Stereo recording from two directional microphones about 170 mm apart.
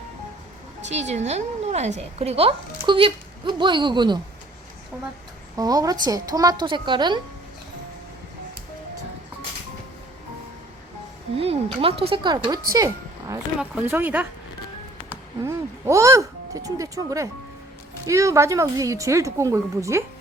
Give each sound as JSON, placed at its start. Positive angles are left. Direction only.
{"t": 0.9, "sound": "a woman's voice", "side_deg": -40}
{"t": 5.5, "sound": "a woman's voice", "side_deg": -20}
{"t": 11.3, "sound": "a woman's voice", "side_deg": -35}
{"t": 12.7, "sound": "a sound", "side_deg": -20}
{"t": 13.6, "sound": "a woman's voice", "side_deg": -10}